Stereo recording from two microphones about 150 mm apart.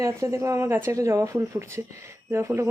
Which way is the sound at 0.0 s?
20° right (ahead or behind).